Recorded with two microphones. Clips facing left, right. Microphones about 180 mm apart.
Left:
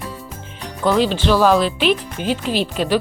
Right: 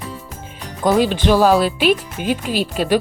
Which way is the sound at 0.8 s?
40° right (ahead or behind).